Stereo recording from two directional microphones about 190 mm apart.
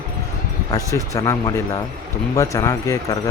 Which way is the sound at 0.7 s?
15° left (ahead or behind).